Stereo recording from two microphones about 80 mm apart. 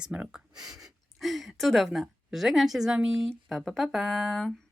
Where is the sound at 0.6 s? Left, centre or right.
Right.